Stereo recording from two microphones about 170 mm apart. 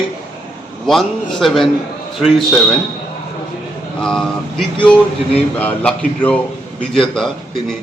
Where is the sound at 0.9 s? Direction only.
Centre (ahead or behind).